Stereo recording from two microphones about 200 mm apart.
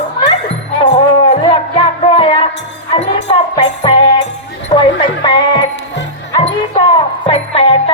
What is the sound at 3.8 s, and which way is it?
Music, 25° left (ahead or behind).